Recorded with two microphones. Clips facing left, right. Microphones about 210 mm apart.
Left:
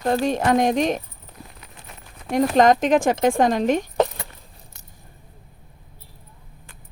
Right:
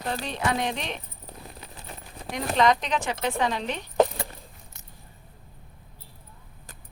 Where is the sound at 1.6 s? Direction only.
30° right (ahead or behind).